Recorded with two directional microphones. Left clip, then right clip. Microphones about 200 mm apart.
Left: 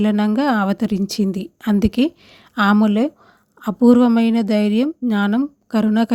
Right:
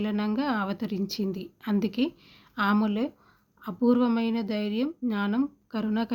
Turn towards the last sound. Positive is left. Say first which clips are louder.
# left 12 dB
turn(degrees=45)  # may be behind; listen again after turning